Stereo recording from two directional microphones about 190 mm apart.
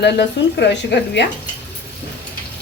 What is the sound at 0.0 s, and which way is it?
A woman's voice, 60° left (ahead or behind).